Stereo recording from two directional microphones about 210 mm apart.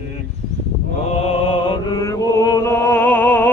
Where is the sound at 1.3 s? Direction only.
25° left (ahead or behind).